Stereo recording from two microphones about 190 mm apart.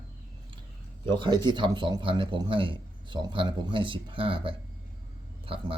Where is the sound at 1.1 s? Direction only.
25° right (ahead or behind).